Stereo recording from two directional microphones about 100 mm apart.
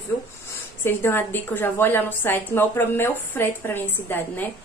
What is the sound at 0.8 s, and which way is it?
A woman's voice, 20° left (ahead or behind).